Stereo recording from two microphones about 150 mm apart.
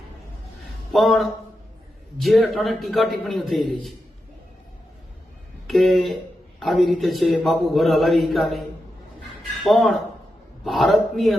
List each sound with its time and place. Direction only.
0.9 s a man's voice: centre (ahead or behind)
5.6 s a man's voice: centre (ahead or behind)
9.6 s a man's voice: centre (ahead or behind)